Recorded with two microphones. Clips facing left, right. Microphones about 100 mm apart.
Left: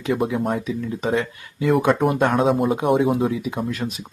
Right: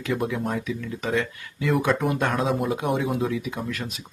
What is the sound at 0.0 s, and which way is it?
A man's voice, 30° left (ahead or behind).